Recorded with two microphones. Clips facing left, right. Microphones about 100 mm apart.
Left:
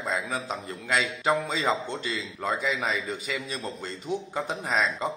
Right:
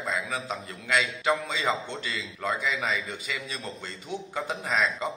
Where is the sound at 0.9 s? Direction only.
35° left (ahead or behind).